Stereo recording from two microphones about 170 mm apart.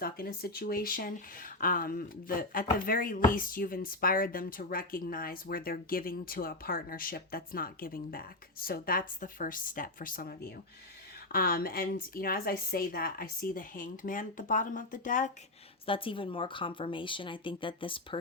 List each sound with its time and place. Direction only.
0.0 s speech: 65° left (ahead or behind)
15.9 s speech: 30° left (ahead or behind)